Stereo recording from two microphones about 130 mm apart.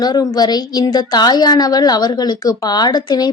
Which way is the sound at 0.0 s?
30° left (ahead or behind).